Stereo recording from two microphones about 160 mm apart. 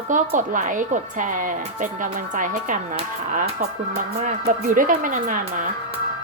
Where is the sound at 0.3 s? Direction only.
55° right (ahead or behind).